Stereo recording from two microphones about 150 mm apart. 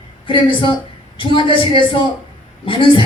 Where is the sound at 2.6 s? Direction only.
35° left (ahead or behind).